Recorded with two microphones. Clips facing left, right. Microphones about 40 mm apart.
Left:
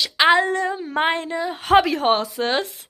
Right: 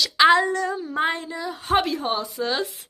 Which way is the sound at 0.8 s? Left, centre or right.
Left.